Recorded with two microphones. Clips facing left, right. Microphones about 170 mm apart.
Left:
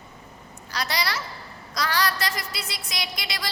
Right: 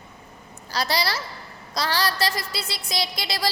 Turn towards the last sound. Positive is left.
turn(degrees=-35)  # may be behind; listen again after turning